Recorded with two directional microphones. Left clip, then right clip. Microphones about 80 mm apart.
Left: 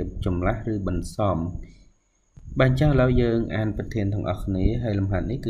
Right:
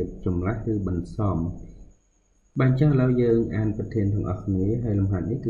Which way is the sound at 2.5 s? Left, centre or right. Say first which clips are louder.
Left 3 dB; left.